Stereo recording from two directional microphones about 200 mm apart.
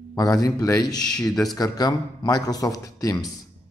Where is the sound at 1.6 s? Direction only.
20° left (ahead or behind).